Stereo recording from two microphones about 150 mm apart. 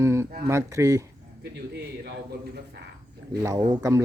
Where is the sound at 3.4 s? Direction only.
30° right (ahead or behind).